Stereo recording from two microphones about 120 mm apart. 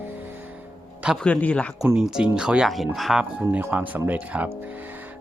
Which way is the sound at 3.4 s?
15° right (ahead or behind).